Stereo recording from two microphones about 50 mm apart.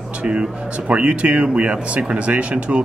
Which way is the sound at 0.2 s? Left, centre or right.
Right.